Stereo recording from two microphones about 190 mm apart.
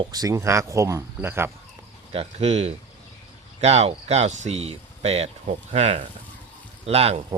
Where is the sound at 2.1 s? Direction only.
35° right (ahead or behind).